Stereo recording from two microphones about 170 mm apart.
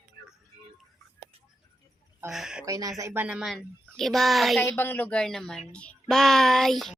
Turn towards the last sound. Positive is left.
turn(degrees=0)  # may be behind; listen again after turning